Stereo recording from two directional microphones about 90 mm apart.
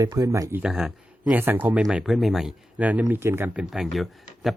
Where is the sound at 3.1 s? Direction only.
25° right (ahead or behind).